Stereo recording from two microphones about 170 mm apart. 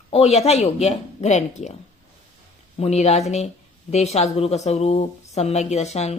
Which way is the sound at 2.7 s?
40° left (ahead or behind).